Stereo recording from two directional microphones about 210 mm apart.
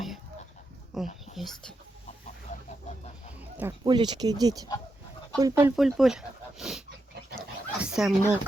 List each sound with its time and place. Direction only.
0.9 s speech: centre (ahead or behind)
3.3 s a sound: 10° right (ahead or behind)
3.8 s speech: 20° right (ahead or behind)
5.7 s speech: centre (ahead or behind)
7.3 s dog: 5° right (ahead or behind)